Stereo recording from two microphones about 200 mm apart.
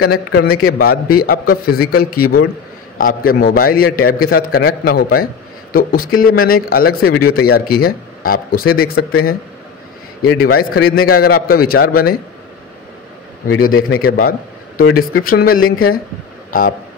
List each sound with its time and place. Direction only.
0.0 s a man's voice: 55° left (ahead or behind)
13.7 s a man's voice: 90° left
13.9 s a man's voice: 45° left (ahead or behind)
16.4 s a sound: 45° left (ahead or behind)